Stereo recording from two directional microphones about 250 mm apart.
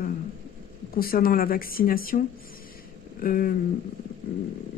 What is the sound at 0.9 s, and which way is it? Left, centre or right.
Speech, left.